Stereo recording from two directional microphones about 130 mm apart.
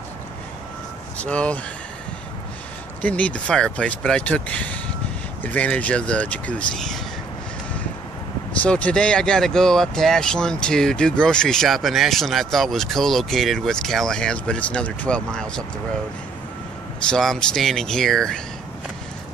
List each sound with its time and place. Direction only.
1.1 s speech: 10° left (ahead or behind)
3.0 s speech: 10° left (ahead or behind)
8.6 s speech: 10° left (ahead or behind)
17.1 s speech: 5° left (ahead or behind)